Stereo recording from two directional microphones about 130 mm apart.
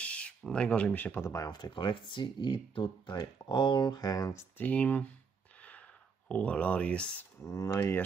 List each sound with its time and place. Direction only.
0.0 s speech: 10° left (ahead or behind)
4.6 s speech: 10° left (ahead or behind)
5.6 s a sound: 10° left (ahead or behind)
7.4 s speech: 25° left (ahead or behind)